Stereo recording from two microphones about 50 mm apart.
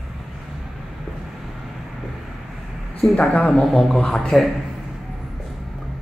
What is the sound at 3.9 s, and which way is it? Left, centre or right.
Speech, centre.